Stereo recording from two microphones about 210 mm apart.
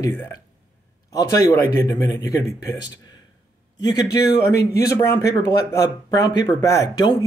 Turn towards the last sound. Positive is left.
turn(degrees=15)  # may be behind; listen again after turning